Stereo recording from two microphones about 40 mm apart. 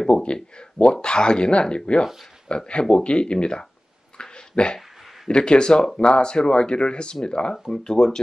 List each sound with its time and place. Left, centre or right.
0.1 s speech: left
4.2 s a sound: left
5.3 s speech: left